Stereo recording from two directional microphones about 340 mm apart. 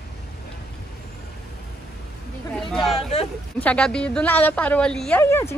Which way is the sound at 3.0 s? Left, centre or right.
Centre.